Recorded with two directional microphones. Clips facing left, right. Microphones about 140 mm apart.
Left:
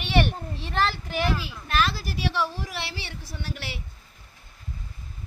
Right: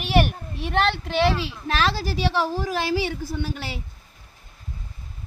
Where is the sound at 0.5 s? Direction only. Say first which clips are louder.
Right 5 dB; 65° right (ahead or behind); by 2.5 s 90° right.